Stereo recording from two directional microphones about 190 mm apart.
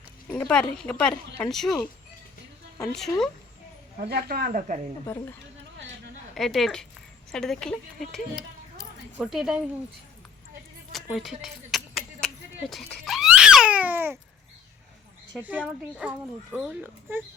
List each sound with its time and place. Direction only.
0.3 s speech: 5° left (ahead or behind)
4.0 s speech: 55° right (ahead or behind)
5.0 s a woman's voice: 15° left (ahead or behind)
6.3 s speech: centre (ahead or behind)
10.9 s a sound: centre (ahead or behind)
15.4 s speech: 10° right (ahead or behind)